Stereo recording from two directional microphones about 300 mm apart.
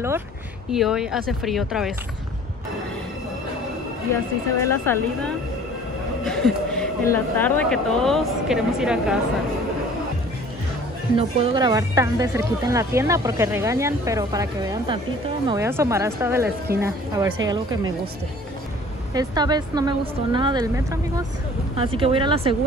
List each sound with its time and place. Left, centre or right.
0.7 s speech: centre
4.6 s speech: centre
11.1 s a woman's voice: centre
19.1 s speech: centre